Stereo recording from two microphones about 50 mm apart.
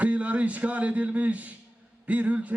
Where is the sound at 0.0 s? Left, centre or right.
Right.